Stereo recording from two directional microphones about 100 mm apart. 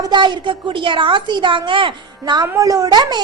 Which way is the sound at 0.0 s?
50° right (ahead or behind).